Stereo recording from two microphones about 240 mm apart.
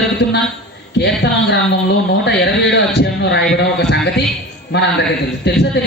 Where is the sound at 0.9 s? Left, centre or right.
Left.